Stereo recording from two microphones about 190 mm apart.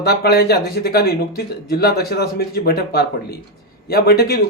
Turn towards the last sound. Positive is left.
turn(degrees=55)  # may be behind; listen again after turning